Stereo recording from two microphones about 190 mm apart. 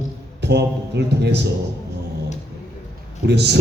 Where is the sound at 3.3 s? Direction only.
60° right (ahead or behind).